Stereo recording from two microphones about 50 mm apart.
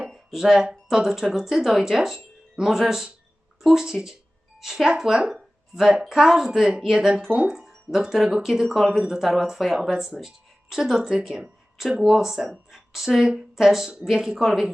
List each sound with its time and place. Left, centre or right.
0.1 s speech: centre